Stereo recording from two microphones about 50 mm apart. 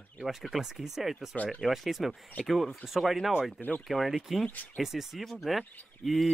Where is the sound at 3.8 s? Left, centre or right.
Centre.